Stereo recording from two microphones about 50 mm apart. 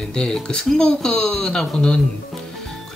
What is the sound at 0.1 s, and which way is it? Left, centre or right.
Speech, centre.